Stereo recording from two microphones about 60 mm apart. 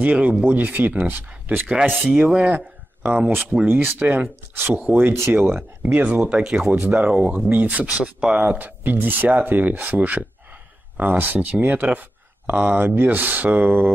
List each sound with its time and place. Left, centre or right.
0.0 s speech: right
2.3 s speech: right
3.0 s speech: right
5.9 s speech: right
6.7 s speech: right
8.5 s speech: right